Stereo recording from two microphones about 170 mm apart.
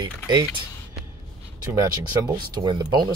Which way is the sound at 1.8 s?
20° right (ahead or behind).